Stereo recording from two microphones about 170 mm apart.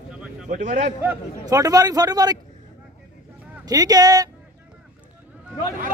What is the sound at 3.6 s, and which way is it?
Speech, 20° right (ahead or behind).